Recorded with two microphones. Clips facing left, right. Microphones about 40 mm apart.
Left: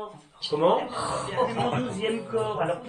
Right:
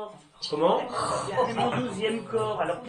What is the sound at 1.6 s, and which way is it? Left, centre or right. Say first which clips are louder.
Speech: even; right.